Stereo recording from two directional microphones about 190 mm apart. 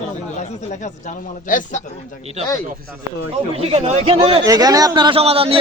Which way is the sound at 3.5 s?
30° right (ahead or behind).